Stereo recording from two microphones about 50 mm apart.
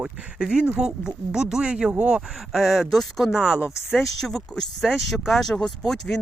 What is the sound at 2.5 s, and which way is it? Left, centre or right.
Speech, centre.